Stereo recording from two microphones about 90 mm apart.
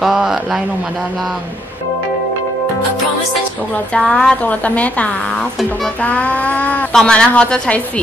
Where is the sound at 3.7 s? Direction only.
15° left (ahead or behind).